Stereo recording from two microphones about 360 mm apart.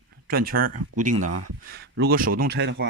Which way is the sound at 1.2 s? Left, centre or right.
Right.